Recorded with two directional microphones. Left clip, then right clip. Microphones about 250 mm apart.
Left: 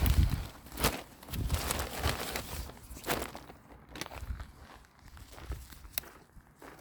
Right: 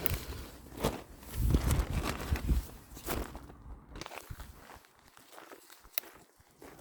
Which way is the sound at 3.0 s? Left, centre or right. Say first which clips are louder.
Left 4 dB; left.